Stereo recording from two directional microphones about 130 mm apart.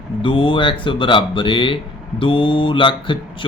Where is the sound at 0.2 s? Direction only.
40° left (ahead or behind).